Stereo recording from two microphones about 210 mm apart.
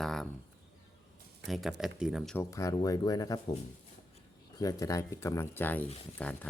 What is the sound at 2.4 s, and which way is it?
Speech, 15° left (ahead or behind).